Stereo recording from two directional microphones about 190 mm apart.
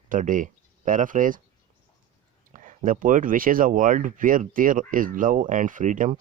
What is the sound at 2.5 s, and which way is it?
Speech, 45° right (ahead or behind).